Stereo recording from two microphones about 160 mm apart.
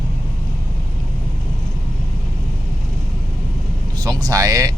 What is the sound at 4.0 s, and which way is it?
Speech, 25° right (ahead or behind).